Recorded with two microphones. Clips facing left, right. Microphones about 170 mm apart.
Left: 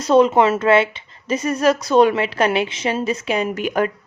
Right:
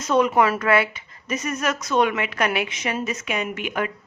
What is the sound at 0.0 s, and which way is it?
A woman's voice, 30° left (ahead or behind).